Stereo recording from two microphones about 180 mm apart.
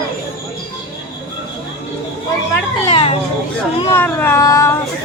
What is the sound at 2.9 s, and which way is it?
Children playing, 30° left (ahead or behind).